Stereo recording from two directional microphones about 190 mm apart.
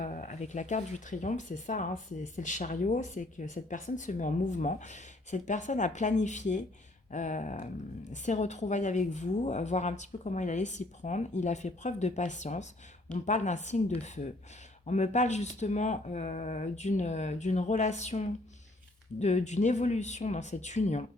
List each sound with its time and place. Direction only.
0.0 s speech: 40° left (ahead or behind)